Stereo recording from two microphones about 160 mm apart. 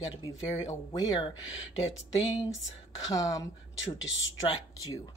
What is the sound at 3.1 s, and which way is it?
Speech, 20° left (ahead or behind).